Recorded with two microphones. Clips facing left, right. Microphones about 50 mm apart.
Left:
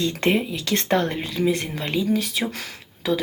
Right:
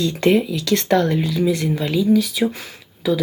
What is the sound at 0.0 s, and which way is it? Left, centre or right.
Speech, left.